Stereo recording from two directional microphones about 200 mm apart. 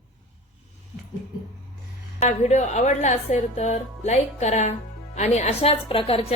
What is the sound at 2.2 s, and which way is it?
A woman's voice, 35° left (ahead or behind).